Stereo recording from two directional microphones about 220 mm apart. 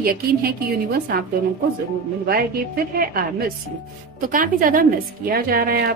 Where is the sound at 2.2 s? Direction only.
45° right (ahead or behind).